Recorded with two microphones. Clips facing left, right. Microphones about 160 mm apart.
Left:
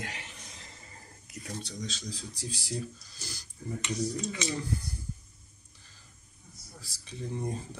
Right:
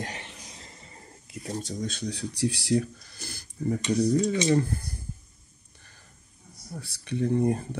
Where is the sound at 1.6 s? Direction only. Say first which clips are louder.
Right 7 dB; 55° right (ahead or behind).